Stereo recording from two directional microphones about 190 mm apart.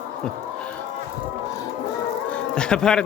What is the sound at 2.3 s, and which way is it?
Speech, 5° left (ahead or behind).